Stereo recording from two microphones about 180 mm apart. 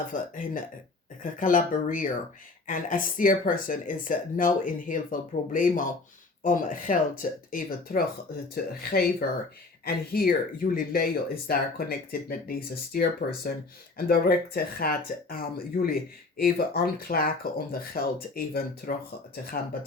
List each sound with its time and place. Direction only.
0.1 s speech: 50° left (ahead or behind)